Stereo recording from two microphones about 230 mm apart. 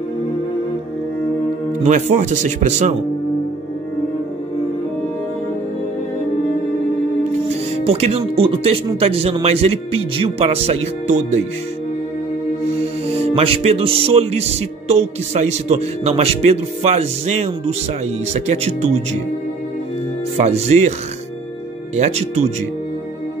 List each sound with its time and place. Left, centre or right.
1.9 s speech: right
7.8 s speech: right
13.0 s speech: right
20.3 s speech: right
21.9 s speech: right